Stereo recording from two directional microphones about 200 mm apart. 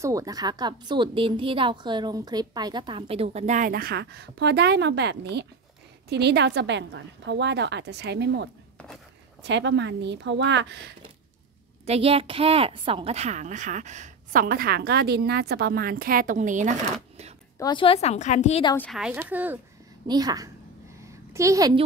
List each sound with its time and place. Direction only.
0.0 s a woman's voice: 15° right (ahead or behind); by 11.0 s 60° right (ahead or behind)
11.8 s a woman's voice: 30° right (ahead or behind)
17.6 s a woman's voice: 20° left (ahead or behind)
18.8 s speech: centre (ahead or behind)
20.1 s a woman's voice: 20° right (ahead or behind)
21.0 s a sound: 15° right (ahead or behind)